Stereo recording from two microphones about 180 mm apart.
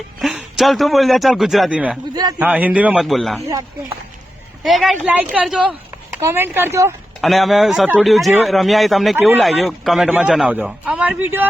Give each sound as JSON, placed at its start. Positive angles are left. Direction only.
{"t": 0.2, "sound": "a man's voice", "side_deg": 0}
{"t": 4.6, "sound": "a man's voice", "side_deg": 0}
{"t": 7.2, "sound": "a man's voice", "side_deg": 0}